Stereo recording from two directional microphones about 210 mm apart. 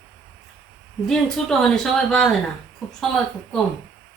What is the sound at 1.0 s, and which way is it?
A woman's voice, centre (ahead or behind).